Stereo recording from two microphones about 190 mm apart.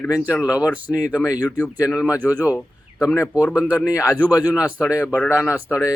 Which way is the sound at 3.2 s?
5° right (ahead or behind).